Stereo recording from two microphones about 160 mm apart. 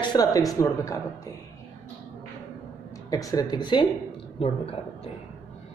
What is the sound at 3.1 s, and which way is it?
Speech, 20° left (ahead or behind).